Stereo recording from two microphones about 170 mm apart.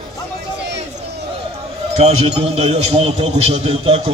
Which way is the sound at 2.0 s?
40° right (ahead or behind).